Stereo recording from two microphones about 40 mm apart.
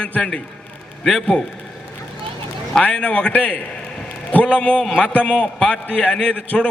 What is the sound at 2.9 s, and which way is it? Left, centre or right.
Speech, left.